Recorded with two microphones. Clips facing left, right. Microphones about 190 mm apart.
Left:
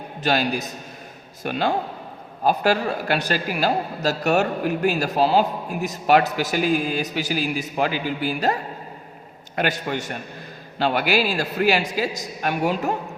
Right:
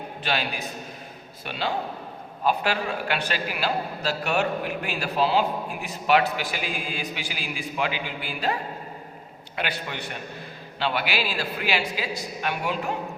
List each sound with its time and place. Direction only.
0.2 s a woman's voice: 40° left (ahead or behind)
9.6 s a woman's voice: 45° left (ahead or behind)